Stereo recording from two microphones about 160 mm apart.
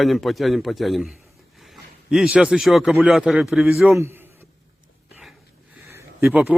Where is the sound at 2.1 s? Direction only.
5° right (ahead or behind).